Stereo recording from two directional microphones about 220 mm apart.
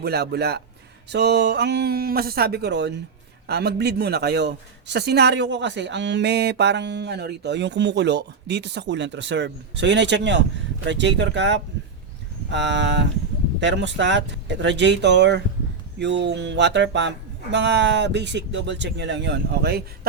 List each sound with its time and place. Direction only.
0.0 s speech: 45° right (ahead or behind)